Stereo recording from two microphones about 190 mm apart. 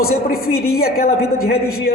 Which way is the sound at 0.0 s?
50° left (ahead or behind).